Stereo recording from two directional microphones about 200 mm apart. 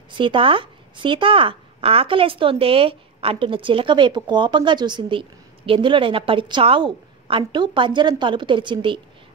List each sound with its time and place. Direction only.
0.2 s speech: 25° right (ahead or behind)